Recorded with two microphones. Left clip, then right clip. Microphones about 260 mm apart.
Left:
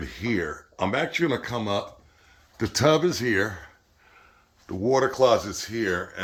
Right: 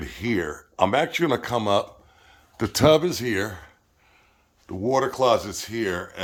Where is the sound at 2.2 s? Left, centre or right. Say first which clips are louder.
Right 2 dB; centre.